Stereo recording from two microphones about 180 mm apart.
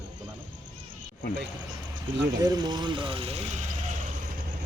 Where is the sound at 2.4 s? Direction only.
20° right (ahead or behind); by 3.6 s 40° right (ahead or behind).